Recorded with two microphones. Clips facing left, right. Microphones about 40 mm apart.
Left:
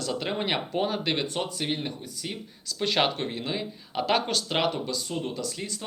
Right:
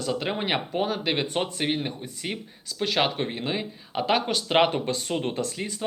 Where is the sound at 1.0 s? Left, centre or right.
Centre.